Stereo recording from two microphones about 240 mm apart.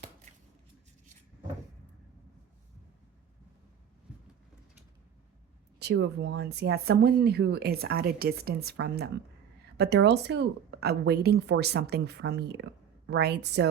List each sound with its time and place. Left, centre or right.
5.8 s a woman's voice: right